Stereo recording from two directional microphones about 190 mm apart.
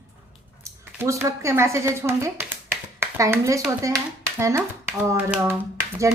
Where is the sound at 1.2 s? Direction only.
15° right (ahead or behind).